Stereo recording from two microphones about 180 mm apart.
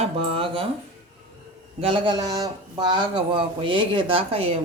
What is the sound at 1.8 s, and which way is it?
Speech, 25° right (ahead or behind).